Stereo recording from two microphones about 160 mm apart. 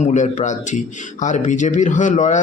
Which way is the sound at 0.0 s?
45° left (ahead or behind).